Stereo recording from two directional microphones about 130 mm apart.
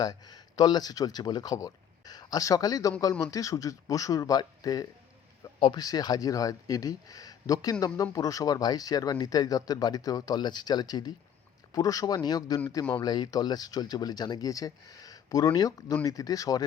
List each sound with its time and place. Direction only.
0.0 s speech: 30° left (ahead or behind)